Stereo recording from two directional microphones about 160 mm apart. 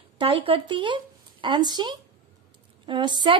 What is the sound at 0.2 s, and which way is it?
A woman's voice, 35° right (ahead or behind).